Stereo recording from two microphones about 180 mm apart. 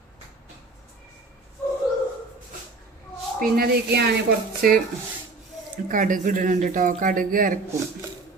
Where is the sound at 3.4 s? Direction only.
60° right (ahead or behind).